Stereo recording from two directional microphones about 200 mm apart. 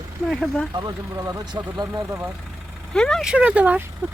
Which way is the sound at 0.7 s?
20° right (ahead or behind).